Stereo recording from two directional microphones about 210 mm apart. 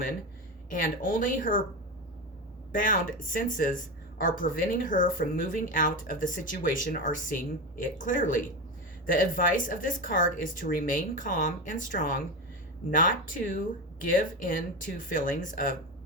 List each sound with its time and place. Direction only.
0.7 s speech: 40° left (ahead or behind)
2.7 s speech: 40° left (ahead or behind)